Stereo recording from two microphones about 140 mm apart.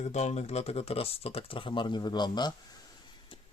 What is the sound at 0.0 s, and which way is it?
Speech, 55° left (ahead or behind).